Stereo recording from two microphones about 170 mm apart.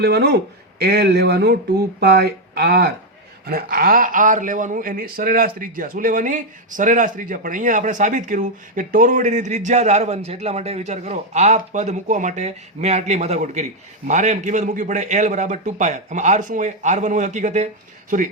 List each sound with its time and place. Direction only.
0.0 s speech: 75° right (ahead or behind)
3.4 s speech: 60° right (ahead or behind); by 17.7 s 45° right (ahead or behind)